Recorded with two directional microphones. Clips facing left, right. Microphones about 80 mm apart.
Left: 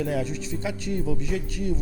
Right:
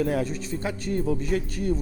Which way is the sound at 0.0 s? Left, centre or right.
Right.